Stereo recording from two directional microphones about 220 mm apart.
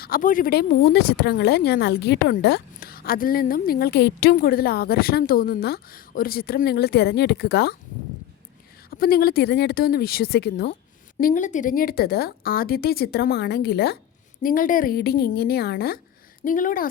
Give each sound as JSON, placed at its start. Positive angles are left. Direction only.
{"t": 0.0, "sound": "speech", "side_deg": 40}
{"t": 8.9, "sound": "speech", "side_deg": 40}
{"t": 11.2, "sound": "speech", "side_deg": 35}